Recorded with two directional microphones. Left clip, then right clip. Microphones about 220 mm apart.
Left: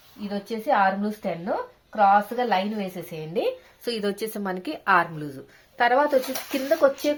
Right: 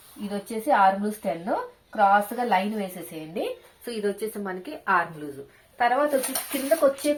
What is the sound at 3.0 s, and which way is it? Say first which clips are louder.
Speech: left 4 dB; 45° left (ahead or behind).